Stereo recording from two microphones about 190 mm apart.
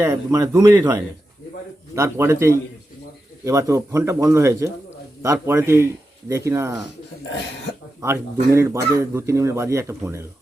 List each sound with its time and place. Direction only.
0.0 s speech: 15° right (ahead or behind)
8.0 s speech: 15° right (ahead or behind)